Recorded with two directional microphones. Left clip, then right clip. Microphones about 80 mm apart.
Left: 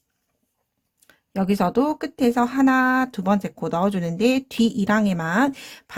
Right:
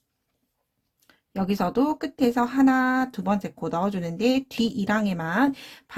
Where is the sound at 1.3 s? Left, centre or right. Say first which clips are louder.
Left 4 dB; left.